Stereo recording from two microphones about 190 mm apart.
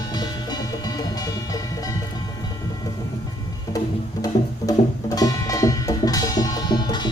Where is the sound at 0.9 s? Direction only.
20° left (ahead or behind).